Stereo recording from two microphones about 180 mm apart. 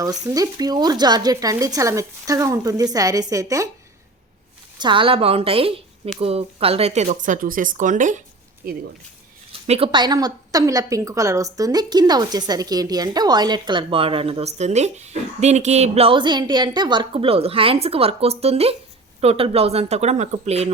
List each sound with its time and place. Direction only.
0.0 s a woman's voice: 20° right (ahead or behind)
4.8 s speech: 25° right (ahead or behind); by 8.2 s 45° right (ahead or behind)
8.6 s speech: 55° right (ahead or behind)
9.5 s a woman's voice: 35° right (ahead or behind)